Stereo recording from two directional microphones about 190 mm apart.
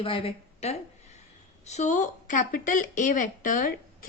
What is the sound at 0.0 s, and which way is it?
A woman's voice, 30° left (ahead or behind).